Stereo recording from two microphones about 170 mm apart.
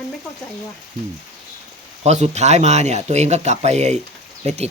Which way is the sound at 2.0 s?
40° right (ahead or behind).